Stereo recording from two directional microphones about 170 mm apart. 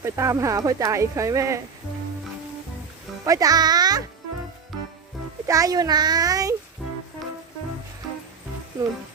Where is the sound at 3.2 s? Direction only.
20° right (ahead or behind).